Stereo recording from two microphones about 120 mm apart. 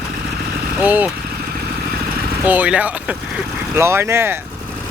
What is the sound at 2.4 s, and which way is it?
Speech, 15° right (ahead or behind).